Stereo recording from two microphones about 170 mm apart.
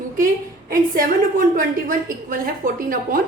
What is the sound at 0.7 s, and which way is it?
A woman's voice, 55° right (ahead or behind).